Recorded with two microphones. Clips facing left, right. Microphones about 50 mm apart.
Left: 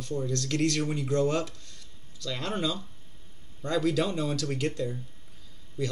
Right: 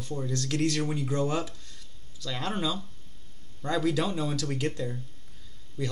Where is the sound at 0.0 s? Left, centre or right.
Centre.